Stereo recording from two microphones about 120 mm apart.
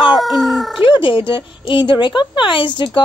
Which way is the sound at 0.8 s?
45° left (ahead or behind).